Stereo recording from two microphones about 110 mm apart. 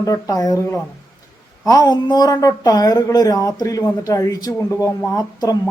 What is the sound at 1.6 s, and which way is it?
Speech, 35° left (ahead or behind).